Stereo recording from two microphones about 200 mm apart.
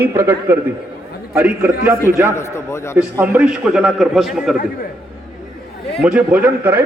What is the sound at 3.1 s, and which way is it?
A man's voice, 10° right (ahead or behind).